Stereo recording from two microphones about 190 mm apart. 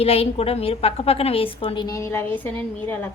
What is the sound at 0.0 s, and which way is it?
A woman's voice, 30° left (ahead or behind).